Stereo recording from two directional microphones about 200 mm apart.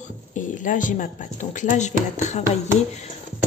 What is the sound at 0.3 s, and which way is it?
A woman's voice, 40° left (ahead or behind).